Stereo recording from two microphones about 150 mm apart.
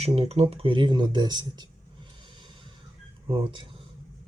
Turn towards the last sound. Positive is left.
turn(degrees=-35)  # may be behind; listen again after turning